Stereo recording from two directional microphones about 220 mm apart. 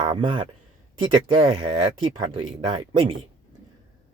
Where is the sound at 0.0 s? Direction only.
20° right (ahead or behind).